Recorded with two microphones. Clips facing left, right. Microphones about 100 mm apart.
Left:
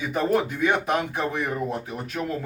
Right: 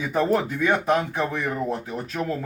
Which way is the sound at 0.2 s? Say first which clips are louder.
Right 1 dB; 15° left (ahead or behind).